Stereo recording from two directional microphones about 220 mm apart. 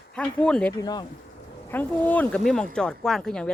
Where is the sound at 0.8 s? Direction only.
15° left (ahead or behind).